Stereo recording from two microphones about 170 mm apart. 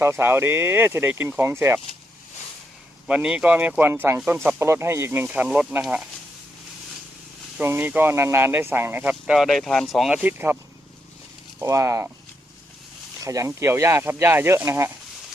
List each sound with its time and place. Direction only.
0.0 s speech: 15° right (ahead or behind)
3.1 s speech: 5° right (ahead or behind)
7.6 s speech: 10° right (ahead or behind)
10.2 s speech: 10° right (ahead or behind)
11.6 s speech: 15° right (ahead or behind)
13.2 s speech: 20° right (ahead or behind)